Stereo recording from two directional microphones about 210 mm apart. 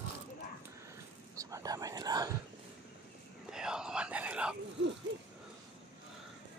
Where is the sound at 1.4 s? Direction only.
15° right (ahead or behind).